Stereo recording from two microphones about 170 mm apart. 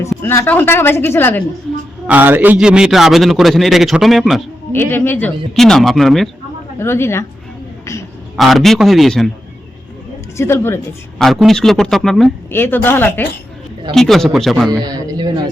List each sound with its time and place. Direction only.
0.2 s a woman's voice: 15° left (ahead or behind)
2.0 s a man's voice: 10° right (ahead or behind)
4.7 s a man's voice: 10° left (ahead or behind)
6.7 s a woman's voice: 15° left (ahead or behind)
8.4 s a man's voice: centre (ahead or behind)
10.3 s a woman's voice: 15° left (ahead or behind)
11.2 s a man's voice: centre (ahead or behind)
12.5 s a woman's voice: 10° left (ahead or behind)
14.8 s speech: 20° right (ahead or behind)